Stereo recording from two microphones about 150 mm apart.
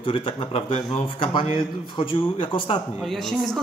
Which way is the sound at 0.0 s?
35° left (ahead or behind).